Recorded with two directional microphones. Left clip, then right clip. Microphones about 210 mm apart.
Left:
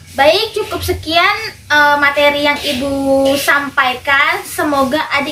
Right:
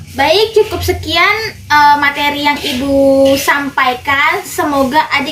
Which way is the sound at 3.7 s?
Centre (ahead or behind).